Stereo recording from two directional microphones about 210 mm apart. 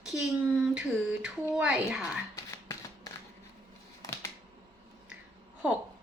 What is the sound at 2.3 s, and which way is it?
Shuffling cards, 15° left (ahead or behind).